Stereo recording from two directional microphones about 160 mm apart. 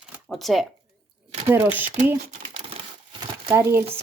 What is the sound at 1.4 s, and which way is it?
Speech, 15° right (ahead or behind).